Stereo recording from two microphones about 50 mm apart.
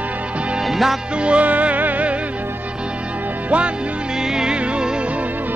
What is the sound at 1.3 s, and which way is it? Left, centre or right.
Music, right.